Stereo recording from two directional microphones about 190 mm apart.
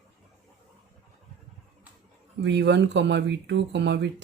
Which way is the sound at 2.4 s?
65° right (ahead or behind).